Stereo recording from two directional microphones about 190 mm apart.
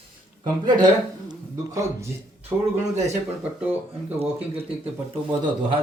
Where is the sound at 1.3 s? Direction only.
20° right (ahead or behind).